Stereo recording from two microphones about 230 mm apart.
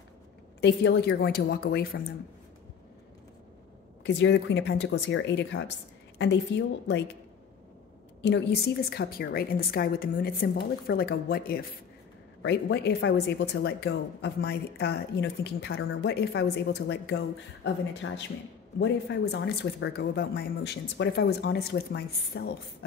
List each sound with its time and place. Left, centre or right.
0.6 s speech: left
4.0 s speech: left
8.2 s a woman's voice: left